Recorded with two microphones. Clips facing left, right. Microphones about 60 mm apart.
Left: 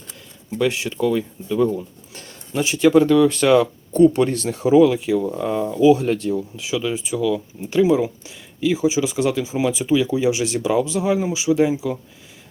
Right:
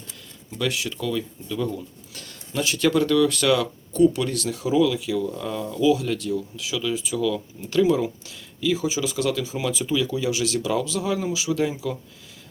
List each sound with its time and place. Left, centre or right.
0.6 s speech: left
7.2 s speech: centre